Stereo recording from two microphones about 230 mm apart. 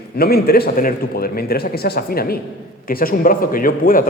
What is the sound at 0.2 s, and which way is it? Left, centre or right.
A man's voice, left.